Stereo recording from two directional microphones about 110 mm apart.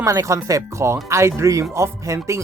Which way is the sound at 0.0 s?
30° right (ahead or behind).